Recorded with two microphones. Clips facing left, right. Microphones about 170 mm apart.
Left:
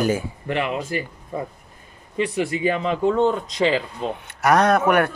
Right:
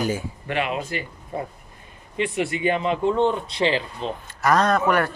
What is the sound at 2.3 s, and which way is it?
Speech, 40° left (ahead or behind).